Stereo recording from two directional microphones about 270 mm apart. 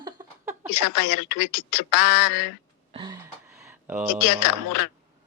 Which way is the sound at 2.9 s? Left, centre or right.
Centre.